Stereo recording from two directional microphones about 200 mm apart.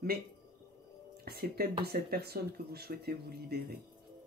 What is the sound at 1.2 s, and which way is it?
Speech, 50° right (ahead or behind).